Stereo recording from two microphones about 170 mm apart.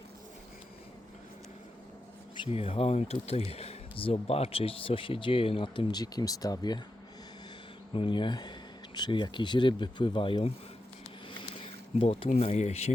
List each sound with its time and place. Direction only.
2.3 s speech: 30° left (ahead or behind)
7.9 s speech: 30° left (ahead or behind)
11.3 s a sound: 30° left (ahead or behind)
12.3 s speech: 40° left (ahead or behind)